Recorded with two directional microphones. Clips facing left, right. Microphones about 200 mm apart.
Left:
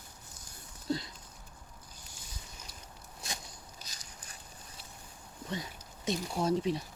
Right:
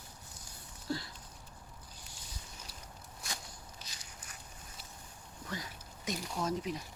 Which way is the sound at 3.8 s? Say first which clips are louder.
Left 1 dB; 40° left (ahead or behind).